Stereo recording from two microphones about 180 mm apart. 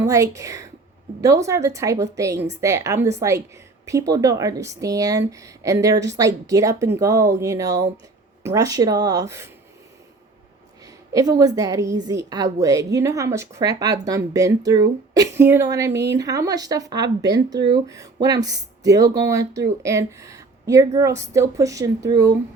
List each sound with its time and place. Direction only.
0.0 s a woman's voice: 15° right (ahead or behind)
10.8 s a woman's voice: 20° right (ahead or behind)
15.9 s speech: 70° right (ahead or behind)
16.1 s a woman's voice: 20° right (ahead or behind)